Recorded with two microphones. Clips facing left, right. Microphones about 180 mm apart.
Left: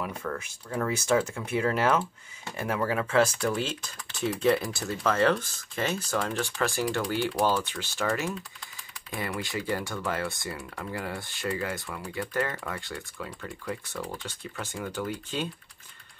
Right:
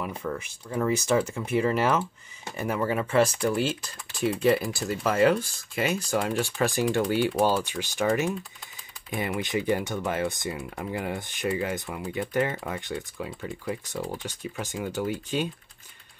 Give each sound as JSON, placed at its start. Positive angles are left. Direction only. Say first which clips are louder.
{"t": 0.0, "sound": "speech", "louder": "right 2 dB", "side_deg": -10}